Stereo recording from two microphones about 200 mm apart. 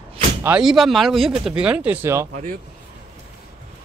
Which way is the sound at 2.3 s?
40° right (ahead or behind).